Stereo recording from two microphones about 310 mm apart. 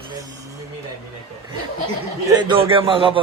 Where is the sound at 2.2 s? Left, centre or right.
Centre.